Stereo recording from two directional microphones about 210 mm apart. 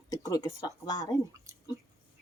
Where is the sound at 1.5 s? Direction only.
15° right (ahead or behind).